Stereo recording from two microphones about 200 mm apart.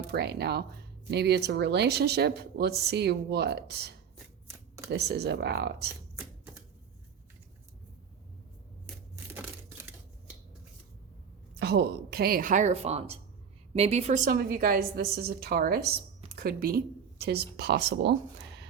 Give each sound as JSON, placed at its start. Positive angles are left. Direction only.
{"t": 0.1, "sound": "speech", "side_deg": -55}
{"t": 11.6, "sound": "a woman's voice", "side_deg": -55}
{"t": 14.3, "sound": "a woman's voice", "side_deg": -50}